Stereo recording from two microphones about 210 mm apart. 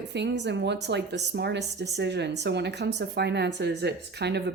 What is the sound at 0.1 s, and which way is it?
Speech, 55° right (ahead or behind).